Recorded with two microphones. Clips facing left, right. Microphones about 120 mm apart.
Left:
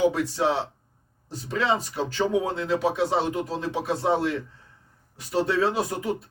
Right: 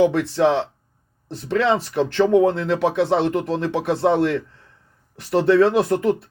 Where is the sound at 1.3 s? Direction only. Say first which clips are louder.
Right 6 dB; 70° right (ahead or behind).